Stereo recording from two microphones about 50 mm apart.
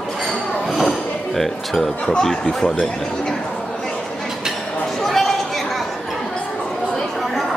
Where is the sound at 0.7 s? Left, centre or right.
Centre.